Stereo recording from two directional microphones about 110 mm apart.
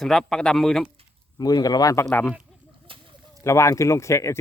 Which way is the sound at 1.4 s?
35° left (ahead or behind).